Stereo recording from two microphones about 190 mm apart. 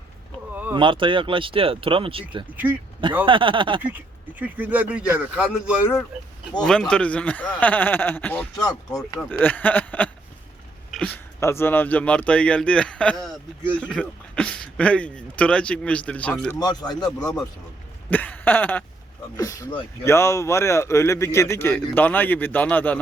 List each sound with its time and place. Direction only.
0.7 s speech: 25° right (ahead or behind)
3.2 s speech: 25° right (ahead or behind)
3.8 s speech: 10° right (ahead or behind); by 8.4 s 10° left (ahead or behind)
8.5 s speech: 20° left (ahead or behind)
10.9 s a sound: centre (ahead or behind)
11.3 s speech: 15° left (ahead or behind)
16.6 s speech: 20° left (ahead or behind)
18.1 s speech: 10° left (ahead or behind)